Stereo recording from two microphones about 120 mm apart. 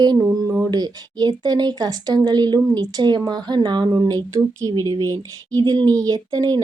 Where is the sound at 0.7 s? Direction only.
35° right (ahead or behind).